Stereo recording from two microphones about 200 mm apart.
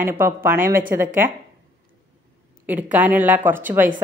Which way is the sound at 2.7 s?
10° right (ahead or behind).